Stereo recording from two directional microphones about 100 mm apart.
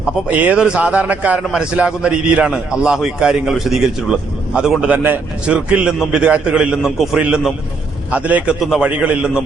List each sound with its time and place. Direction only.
0.3 s a man's voice: 15° right (ahead or behind)
8.6 s a man's voice: 5° right (ahead or behind)